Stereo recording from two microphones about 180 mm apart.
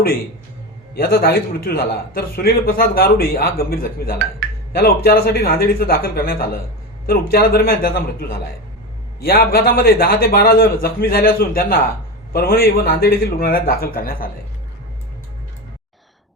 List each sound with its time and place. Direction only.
0.9 s a man's voice: 55° left (ahead or behind)